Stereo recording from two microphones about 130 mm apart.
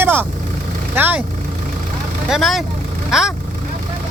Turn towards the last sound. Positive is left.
turn(degrees=-5)  # may be behind; listen again after turning